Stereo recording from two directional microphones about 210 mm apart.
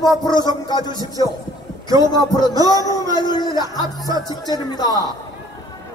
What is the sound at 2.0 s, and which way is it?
A man's voice, 20° left (ahead or behind).